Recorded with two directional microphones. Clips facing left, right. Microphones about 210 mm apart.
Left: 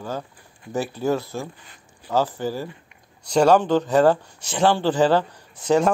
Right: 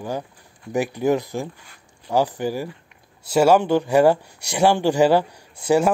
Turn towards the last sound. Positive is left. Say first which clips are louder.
# right 1 dB
turn(degrees=-10)  # may be behind; listen again after turning